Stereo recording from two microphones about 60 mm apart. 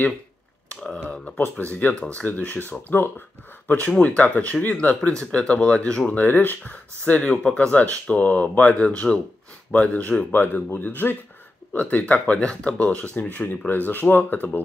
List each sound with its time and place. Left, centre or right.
1.6 s speech: left
4.0 s speech: left
6.1 s speech: left
7.2 s speech: centre
7.5 s speech: left